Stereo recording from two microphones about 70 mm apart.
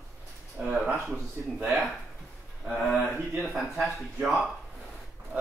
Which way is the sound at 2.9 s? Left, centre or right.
Centre.